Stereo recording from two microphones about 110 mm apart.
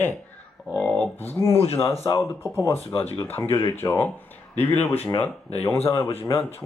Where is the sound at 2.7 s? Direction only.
65° left (ahead or behind).